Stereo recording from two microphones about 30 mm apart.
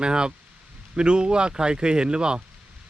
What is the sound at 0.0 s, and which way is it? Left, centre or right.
Speech, right.